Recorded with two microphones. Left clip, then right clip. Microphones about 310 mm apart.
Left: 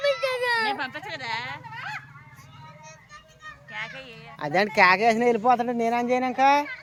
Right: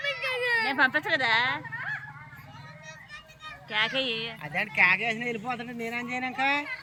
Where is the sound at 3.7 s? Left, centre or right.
Right.